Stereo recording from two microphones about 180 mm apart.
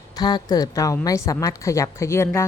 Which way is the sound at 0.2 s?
25° left (ahead or behind).